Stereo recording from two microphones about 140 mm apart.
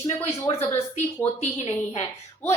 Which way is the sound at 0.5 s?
45° left (ahead or behind).